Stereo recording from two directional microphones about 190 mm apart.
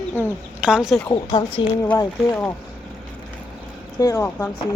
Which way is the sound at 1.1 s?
25° left (ahead or behind).